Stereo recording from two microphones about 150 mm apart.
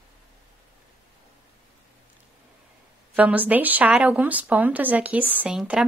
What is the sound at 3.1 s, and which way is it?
A woman's voice, 10° right (ahead or behind).